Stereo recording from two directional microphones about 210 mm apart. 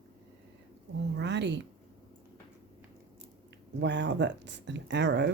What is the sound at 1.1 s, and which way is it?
Speech, 55° right (ahead or behind).